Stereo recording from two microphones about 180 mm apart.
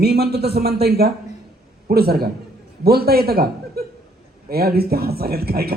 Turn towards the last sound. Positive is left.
turn(degrees=-60)  # may be behind; listen again after turning